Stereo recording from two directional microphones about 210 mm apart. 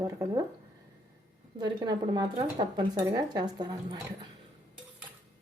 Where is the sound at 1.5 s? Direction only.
20° right (ahead or behind).